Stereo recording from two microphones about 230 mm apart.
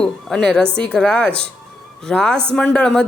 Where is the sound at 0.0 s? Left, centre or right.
Centre.